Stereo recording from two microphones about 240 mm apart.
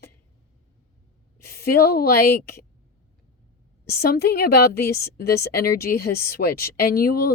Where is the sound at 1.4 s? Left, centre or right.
Left.